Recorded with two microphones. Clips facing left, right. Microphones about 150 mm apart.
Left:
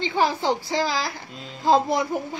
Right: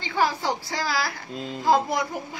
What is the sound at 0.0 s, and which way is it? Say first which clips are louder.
Child singing: left 2 dB; 20° left (ahead or behind).